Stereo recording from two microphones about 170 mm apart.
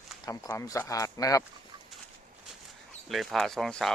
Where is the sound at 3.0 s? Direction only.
Centre (ahead or behind).